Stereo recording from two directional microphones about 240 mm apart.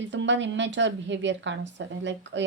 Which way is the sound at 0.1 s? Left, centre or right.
Right.